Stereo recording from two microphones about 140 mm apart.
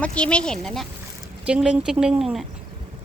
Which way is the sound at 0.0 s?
10° left (ahead or behind).